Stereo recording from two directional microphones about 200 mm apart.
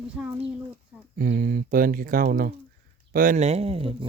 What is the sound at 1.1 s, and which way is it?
Speech, 50° right (ahead or behind).